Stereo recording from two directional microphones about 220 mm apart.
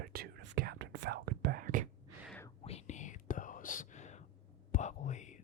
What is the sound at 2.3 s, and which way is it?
Whispering, 10° left (ahead or behind).